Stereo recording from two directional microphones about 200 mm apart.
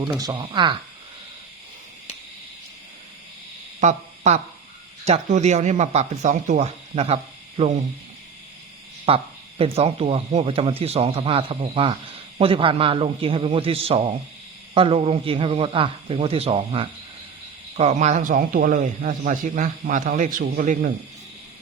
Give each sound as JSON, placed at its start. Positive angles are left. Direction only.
{"t": 0.0, "sound": "speech", "side_deg": -20}
{"t": 3.8, "sound": "a sound", "side_deg": -35}
{"t": 5.0, "sound": "speech", "side_deg": -35}
{"t": 9.0, "sound": "a man's voice", "side_deg": -30}